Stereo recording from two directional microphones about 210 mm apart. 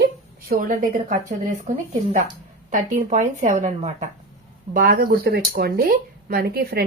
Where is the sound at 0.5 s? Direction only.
40° right (ahead or behind).